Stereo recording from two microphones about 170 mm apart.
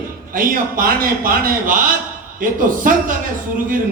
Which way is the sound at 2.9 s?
55° right (ahead or behind).